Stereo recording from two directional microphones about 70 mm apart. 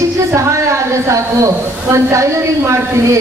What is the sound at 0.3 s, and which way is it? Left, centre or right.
Speech, right.